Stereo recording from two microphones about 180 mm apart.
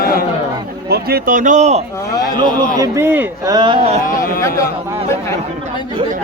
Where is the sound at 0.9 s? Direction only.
60° right (ahead or behind); by 1.8 s 40° right (ahead or behind).